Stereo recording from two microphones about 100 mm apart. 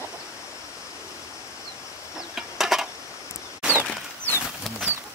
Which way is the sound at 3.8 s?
20° left (ahead or behind).